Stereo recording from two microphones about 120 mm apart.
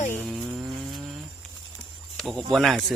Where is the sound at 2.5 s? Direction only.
Centre (ahead or behind).